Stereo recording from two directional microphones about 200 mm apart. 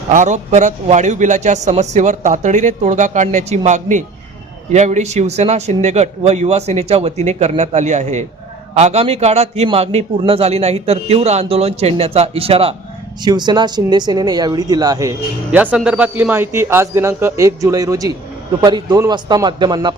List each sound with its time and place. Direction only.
0.1 s a man's voice: 40° right (ahead or behind); by 15.1 s 15° right (ahead or behind)
15.5 s a man's voice: 5° right (ahead or behind)